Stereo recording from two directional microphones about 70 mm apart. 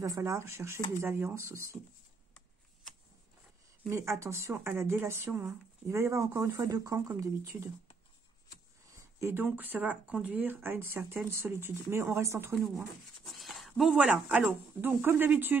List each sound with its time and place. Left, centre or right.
0.0 s speech: right
3.9 s speech: right
9.3 s speech: right
13.3 s a sound: centre
13.9 s speech: centre
14.8 s speech: right